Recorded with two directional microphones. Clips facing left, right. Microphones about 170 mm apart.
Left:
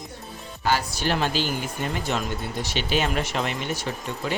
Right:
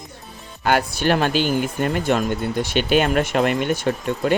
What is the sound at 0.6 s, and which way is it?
Speech, 60° right (ahead or behind).